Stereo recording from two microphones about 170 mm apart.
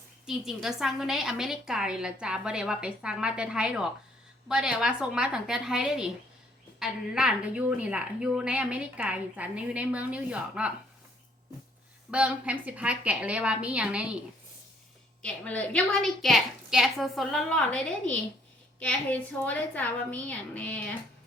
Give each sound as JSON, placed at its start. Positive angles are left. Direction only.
{"t": 0.3, "sound": "a woman's voice", "side_deg": 0}
{"t": 12.1, "sound": "a woman's voice", "side_deg": -5}
{"t": 15.2, "sound": "a woman's voice", "side_deg": 5}